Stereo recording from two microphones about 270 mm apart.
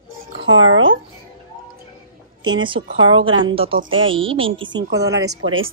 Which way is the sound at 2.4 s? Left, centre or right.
Centre.